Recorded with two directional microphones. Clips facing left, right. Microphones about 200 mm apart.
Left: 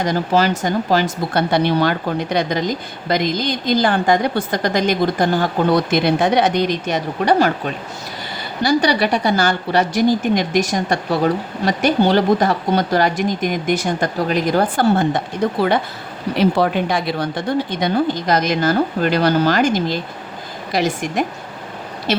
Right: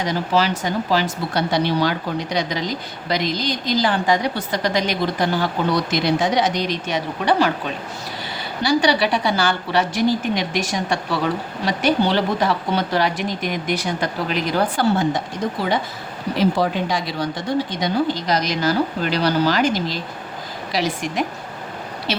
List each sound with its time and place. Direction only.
0.0 s speech: 50° left (ahead or behind)
8.6 s speech: 45° left (ahead or behind)
16.4 s speech: 60° left (ahead or behind)